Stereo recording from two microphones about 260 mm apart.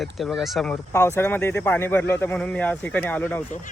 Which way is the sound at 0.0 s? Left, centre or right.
Centre.